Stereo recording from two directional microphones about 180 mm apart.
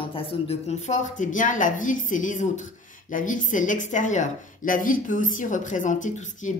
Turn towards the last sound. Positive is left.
turn(degrees=45)  # may be behind; listen again after turning